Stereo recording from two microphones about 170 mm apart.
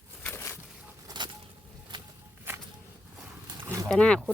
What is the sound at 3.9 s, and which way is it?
Speech, 5° left (ahead or behind).